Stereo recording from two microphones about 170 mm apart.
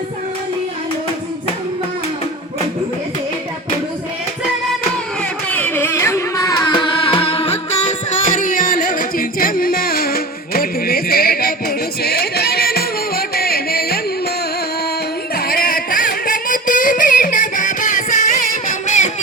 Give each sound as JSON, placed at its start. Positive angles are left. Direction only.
{"t": 5.5, "sound": "music", "side_deg": 10}
{"t": 15.4, "sound": "music", "side_deg": 60}